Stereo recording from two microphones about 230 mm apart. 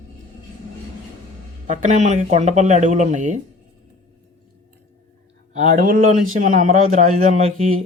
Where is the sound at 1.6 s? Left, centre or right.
Right.